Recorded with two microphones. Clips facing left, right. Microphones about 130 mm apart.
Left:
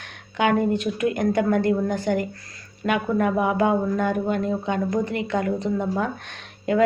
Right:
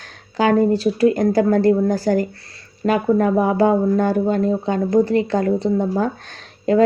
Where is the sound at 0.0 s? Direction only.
35° right (ahead or behind).